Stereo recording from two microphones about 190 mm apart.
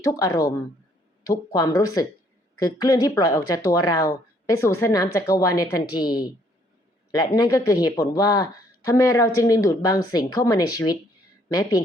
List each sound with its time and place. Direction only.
0.0 s a woman's voice: 20° left (ahead or behind)